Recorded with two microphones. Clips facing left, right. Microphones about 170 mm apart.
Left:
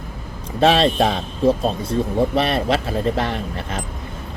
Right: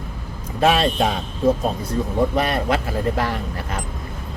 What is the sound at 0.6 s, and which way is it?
Speech, 30° left (ahead or behind).